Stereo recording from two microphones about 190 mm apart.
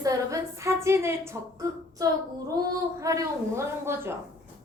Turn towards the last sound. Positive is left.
turn(degrees=-15)  # may be behind; listen again after turning